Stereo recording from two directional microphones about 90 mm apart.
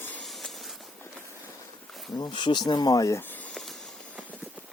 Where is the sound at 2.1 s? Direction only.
55° left (ahead or behind); by 3.2 s 35° left (ahead or behind).